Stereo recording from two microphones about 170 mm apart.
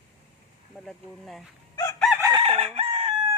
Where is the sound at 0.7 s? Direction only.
Centre (ahead or behind).